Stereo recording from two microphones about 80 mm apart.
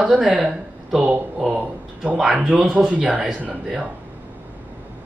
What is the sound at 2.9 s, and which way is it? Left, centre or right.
Speech, centre.